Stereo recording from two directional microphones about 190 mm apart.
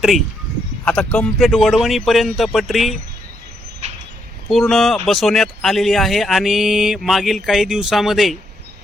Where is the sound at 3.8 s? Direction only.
35° right (ahead or behind).